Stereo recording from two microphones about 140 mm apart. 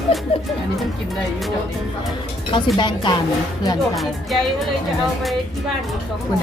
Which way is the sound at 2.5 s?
35° left (ahead or behind).